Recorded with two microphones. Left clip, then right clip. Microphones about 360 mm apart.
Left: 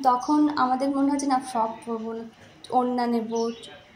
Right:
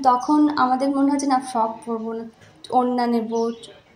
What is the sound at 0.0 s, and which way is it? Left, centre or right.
A woman's voice, left.